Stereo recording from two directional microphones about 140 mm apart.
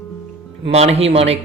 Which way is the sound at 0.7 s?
50° right (ahead or behind).